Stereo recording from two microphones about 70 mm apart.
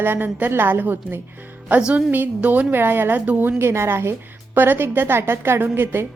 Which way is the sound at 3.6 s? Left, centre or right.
Right.